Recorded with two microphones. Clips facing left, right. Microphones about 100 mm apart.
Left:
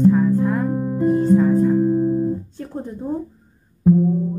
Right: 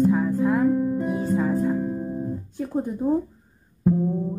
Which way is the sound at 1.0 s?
5° right (ahead or behind).